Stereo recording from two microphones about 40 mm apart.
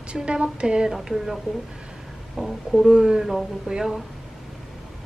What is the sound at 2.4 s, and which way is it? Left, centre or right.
Speech, centre.